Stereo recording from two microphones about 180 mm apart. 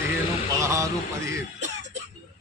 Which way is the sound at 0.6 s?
15° right (ahead or behind).